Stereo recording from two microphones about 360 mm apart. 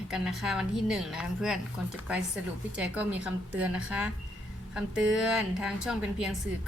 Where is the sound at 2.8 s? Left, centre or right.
Centre.